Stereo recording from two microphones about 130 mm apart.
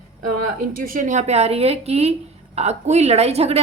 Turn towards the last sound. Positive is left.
turn(degrees=-55)  # may be behind; listen again after turning